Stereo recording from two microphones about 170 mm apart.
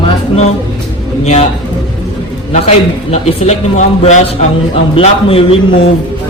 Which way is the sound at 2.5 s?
40° left (ahead or behind).